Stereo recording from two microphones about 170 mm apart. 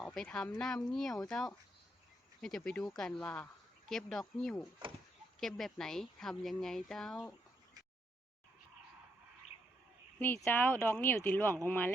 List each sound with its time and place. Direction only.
0.1 s speech: 5° left (ahead or behind)
4.8 s speech: 30° right (ahead or behind)
5.4 s speech: centre (ahead or behind)
10.2 s speech: 10° left (ahead or behind)